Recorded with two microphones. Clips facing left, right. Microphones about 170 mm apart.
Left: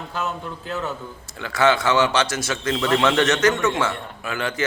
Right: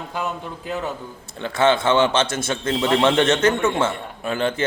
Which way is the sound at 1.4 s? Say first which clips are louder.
Right 1 dB; 25° right (ahead or behind).